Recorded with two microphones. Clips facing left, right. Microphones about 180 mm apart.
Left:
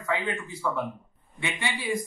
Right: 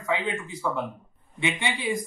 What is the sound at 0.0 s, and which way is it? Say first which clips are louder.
Speech: right 1 dB; 20° right (ahead or behind).